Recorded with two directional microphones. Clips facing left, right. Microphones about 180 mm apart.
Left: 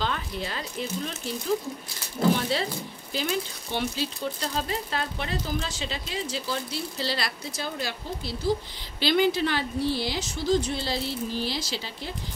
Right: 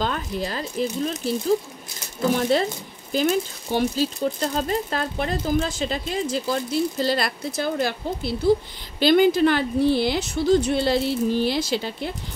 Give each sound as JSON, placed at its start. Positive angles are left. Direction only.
{"t": 0.0, "sound": "speech", "side_deg": -40}
{"t": 2.5, "sound": "a woman's voice", "side_deg": -50}